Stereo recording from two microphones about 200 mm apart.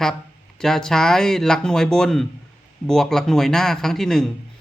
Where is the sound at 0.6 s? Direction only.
Centre (ahead or behind).